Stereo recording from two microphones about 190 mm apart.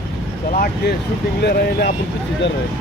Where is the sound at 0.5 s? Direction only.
50° left (ahead or behind).